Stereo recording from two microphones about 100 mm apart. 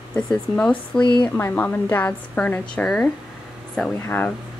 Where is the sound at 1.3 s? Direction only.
20° left (ahead or behind).